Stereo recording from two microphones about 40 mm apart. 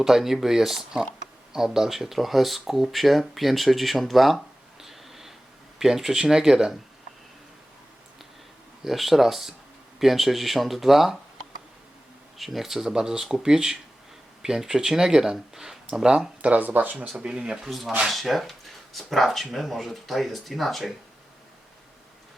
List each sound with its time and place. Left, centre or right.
0.0 s speech: centre
4.8 s a sound: centre
5.8 s speech: centre
8.8 s speech: centre
12.4 s speech: centre
16.4 s speech: right
17.2 s speech: right
17.7 s speech: centre